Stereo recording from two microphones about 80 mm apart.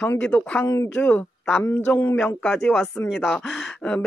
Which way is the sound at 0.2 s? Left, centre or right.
Centre.